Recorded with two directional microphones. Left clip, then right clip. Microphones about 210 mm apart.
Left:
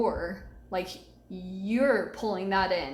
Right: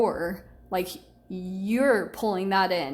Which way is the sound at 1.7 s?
50° right (ahead or behind).